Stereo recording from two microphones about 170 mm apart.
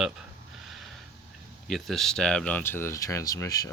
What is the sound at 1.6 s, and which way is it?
Speech, centre (ahead or behind).